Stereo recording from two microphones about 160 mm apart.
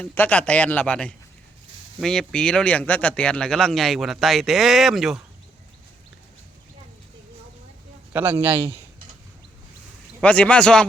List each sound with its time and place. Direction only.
0.0 s speech: 10° left (ahead or behind)
8.1 s a man's voice: 15° right (ahead or behind)
10.2 s speech: 5° left (ahead or behind)